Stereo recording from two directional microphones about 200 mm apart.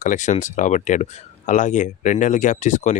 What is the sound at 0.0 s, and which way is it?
Speech, 40° left (ahead or behind).